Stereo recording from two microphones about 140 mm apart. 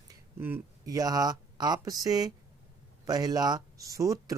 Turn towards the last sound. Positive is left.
turn(degrees=-25)  # may be behind; listen again after turning